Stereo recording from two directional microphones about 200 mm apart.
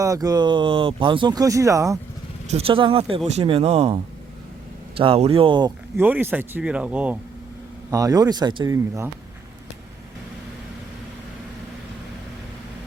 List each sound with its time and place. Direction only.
0.0 s speech: 15° right (ahead or behind)
2.5 s speech: 30° right (ahead or behind)
6.0 s speech: 10° right (ahead or behind)